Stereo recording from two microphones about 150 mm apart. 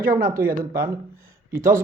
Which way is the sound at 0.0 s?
70° right (ahead or behind).